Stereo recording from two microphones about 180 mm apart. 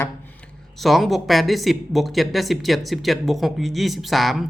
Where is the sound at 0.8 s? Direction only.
Centre (ahead or behind).